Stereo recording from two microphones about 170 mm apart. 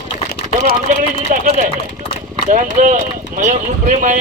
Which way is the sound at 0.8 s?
50° right (ahead or behind).